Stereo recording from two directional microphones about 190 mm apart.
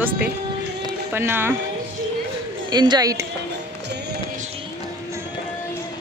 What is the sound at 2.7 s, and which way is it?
Speech, 20° right (ahead or behind).